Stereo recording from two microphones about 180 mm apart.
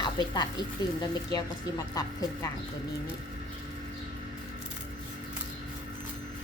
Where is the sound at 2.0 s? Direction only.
20° left (ahead or behind).